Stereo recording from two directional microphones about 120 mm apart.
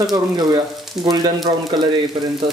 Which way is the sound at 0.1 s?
35° right (ahead or behind).